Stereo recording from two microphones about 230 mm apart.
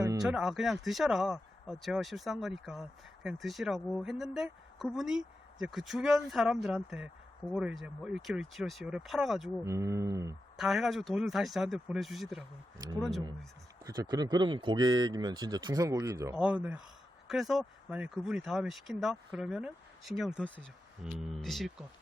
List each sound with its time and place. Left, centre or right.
0.2 s speech: centre
9.6 s speech: centre
10.6 s speech: centre
13.8 s speech: centre